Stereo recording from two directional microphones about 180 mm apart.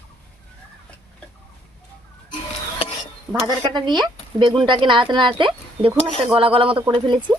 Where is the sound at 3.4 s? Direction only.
25° right (ahead or behind).